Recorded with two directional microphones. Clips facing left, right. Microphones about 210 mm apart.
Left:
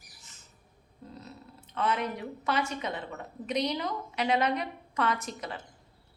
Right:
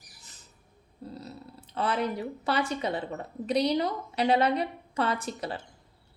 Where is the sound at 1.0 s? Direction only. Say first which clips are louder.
Right 5 dB; 35° right (ahead or behind).